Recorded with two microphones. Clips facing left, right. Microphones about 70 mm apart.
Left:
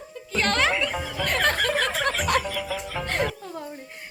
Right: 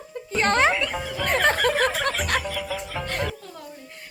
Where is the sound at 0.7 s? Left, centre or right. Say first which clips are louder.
Right 1 dB; centre.